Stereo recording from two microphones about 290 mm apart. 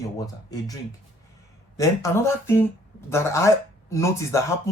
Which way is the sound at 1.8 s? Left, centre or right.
Centre.